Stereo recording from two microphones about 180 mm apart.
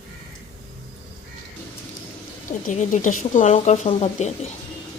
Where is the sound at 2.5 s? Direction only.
45° left (ahead or behind).